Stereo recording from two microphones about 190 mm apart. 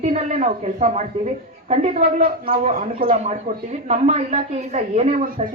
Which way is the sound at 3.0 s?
45° right (ahead or behind).